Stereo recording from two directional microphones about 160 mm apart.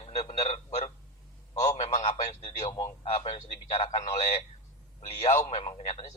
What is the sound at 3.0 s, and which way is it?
Speech, 45° left (ahead or behind).